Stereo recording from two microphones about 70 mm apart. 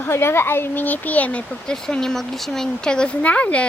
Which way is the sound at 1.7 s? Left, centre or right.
Centre.